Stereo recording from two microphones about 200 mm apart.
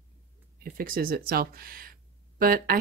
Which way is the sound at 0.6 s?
45° right (ahead or behind).